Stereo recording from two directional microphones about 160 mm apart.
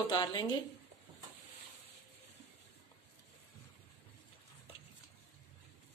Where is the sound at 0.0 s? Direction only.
30° left (ahead or behind).